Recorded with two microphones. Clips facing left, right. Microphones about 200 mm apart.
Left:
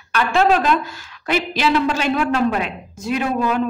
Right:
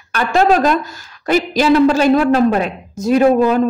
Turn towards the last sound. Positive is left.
turn(degrees=-40)  # may be behind; listen again after turning